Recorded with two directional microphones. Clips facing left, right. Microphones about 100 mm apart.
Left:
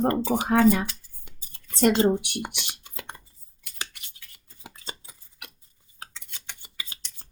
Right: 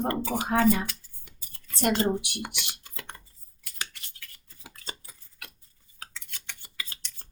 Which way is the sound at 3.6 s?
20° left (ahead or behind).